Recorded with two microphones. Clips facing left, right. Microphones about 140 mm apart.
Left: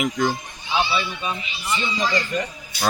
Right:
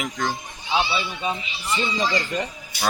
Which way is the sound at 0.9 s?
30° right (ahead or behind).